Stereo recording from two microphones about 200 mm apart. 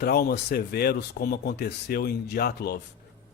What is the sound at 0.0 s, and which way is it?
Speech, 50° left (ahead or behind).